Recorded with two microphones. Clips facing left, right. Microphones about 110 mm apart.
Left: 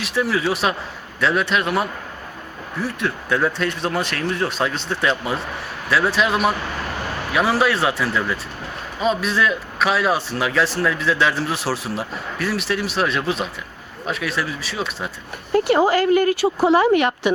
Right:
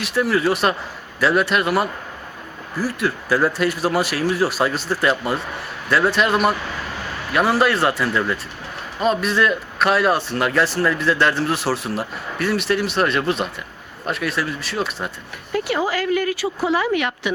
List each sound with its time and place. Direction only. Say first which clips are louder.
0.0 s a man's voice: right 2 dB; centre (ahead or behind)
15.5 s speech: left 5 dB; 45° left (ahead or behind)